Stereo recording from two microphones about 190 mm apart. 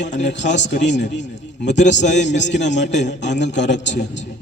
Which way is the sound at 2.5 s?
65° left (ahead or behind).